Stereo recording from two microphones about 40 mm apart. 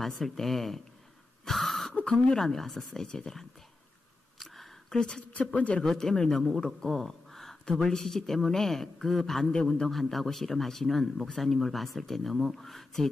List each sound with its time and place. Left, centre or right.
0.0 s a man's voice: centre
1.4 s wheeze: centre
2.3 s speech: centre
4.8 s a woman's voice: centre
5.4 s speech: left
5.9 s a man's voice: centre
9.5 s speech: centre
9.8 s a man's voice: centre